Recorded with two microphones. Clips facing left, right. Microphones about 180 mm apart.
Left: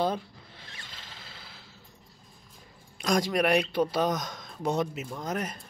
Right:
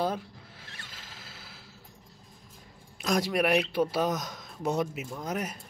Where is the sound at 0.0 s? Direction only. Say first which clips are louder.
Left 2 dB; 5° right (ahead or behind).